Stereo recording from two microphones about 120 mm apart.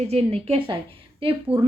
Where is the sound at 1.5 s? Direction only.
10° right (ahead or behind).